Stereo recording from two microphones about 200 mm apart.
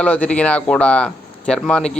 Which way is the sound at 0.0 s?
5° left (ahead or behind).